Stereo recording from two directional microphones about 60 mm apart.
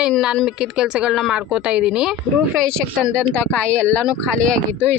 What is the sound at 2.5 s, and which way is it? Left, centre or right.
Speech, centre.